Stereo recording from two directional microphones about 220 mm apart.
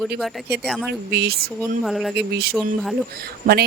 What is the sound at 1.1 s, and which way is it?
Speech, 45° right (ahead or behind).